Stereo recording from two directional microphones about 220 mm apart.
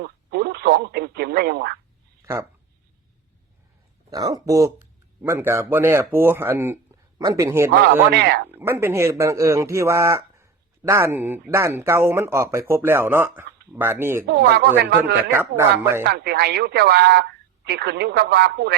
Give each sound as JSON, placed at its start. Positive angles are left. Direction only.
{"t": 0.0, "sound": "speech", "side_deg": -50}
{"t": 2.2, "sound": "speech", "side_deg": -15}
{"t": 4.1, "sound": "speech", "side_deg": -15}
{"t": 8.1, "sound": "speech", "side_deg": -50}
{"t": 8.4, "sound": "speech", "side_deg": -10}
{"t": 14.3, "sound": "speech", "side_deg": -45}
{"t": 15.3, "sound": "speech", "side_deg": -10}
{"t": 16.0, "sound": "speech", "side_deg": -50}